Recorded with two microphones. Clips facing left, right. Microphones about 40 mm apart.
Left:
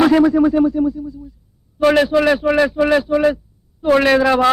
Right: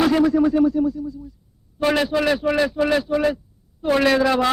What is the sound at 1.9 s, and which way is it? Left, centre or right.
A man's voice, centre.